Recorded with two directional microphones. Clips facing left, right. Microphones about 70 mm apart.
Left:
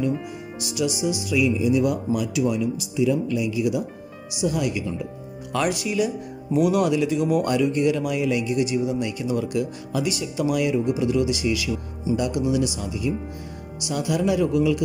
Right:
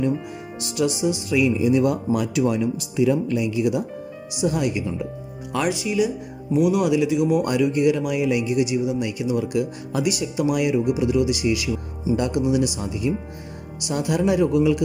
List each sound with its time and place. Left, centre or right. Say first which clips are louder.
0.6 s speech: right 3 dB; right
4.4 s speech: right 2 dB; right
5.5 s speech: right 1 dB; centre; by 14.8 s right